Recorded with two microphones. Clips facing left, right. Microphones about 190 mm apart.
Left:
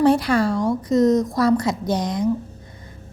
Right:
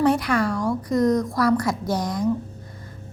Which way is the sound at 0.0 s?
30° left (ahead or behind).